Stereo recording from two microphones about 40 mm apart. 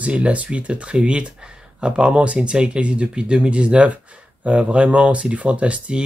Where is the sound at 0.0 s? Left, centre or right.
Right.